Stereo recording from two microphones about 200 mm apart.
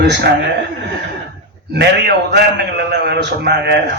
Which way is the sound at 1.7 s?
55° right (ahead or behind).